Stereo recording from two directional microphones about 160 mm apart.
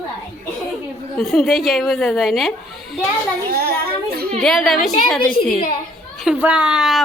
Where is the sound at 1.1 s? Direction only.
Centre (ahead or behind).